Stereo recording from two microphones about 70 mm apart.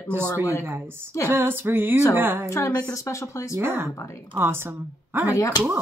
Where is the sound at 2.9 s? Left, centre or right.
Left.